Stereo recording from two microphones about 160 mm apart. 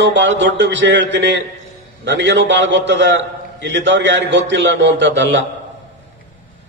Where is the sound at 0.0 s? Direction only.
90° right.